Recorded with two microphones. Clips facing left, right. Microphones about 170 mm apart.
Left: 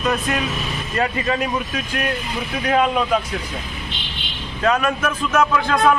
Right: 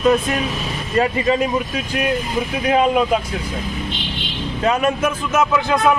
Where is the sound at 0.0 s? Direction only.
25° right (ahead or behind).